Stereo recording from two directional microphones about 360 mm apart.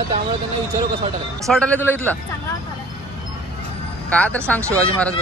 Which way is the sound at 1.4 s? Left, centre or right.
Centre.